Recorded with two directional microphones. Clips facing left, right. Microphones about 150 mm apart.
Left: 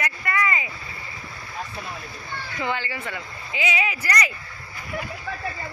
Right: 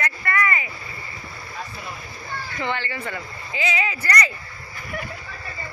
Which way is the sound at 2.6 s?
10° left (ahead or behind).